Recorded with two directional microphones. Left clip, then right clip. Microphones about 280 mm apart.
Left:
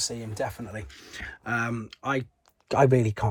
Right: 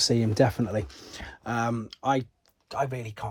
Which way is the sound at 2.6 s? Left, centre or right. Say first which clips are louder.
Left 9 dB; left.